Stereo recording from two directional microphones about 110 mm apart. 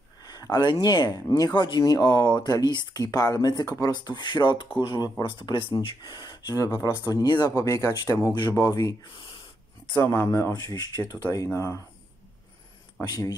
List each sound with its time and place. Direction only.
0.2 s speech: 40° left (ahead or behind)
9.9 s speech: 20° left (ahead or behind)
10.5 s speech: 40° left (ahead or behind)
13.0 s speech: 25° left (ahead or behind)